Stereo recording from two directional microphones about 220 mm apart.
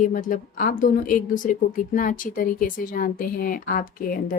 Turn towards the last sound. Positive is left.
turn(degrees=40)  # may be behind; listen again after turning